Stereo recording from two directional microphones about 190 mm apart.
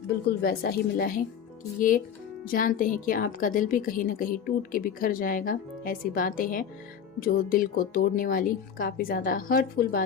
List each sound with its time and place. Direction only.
0.3 s a woman's voice: 55° left (ahead or behind)
2.4 s a woman's voice: 50° left (ahead or behind)